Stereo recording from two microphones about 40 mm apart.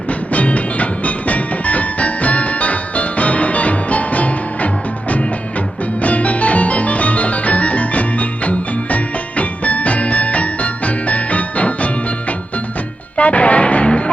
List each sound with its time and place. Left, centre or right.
0.1 s music: left
13.1 s music: left